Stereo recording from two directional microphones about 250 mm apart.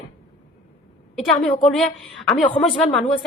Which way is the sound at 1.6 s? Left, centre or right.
Centre.